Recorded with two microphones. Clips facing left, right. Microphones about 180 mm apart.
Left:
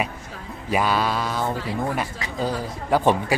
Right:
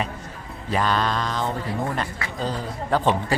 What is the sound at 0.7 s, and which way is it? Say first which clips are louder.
A man's voice: left 1 dB; 10° left (ahead or behind).